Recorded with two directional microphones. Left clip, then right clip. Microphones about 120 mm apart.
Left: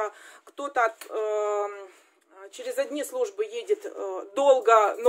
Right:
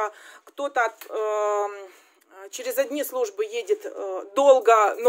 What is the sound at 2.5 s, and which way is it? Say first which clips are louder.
Speech: right 4 dB; 65° right (ahead or behind).